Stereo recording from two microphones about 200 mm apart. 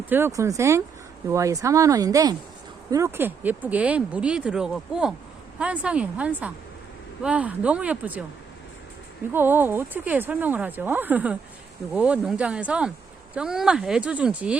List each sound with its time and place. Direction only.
0.1 s speech: 15° right (ahead or behind)
9.3 s speech: 10° right (ahead or behind)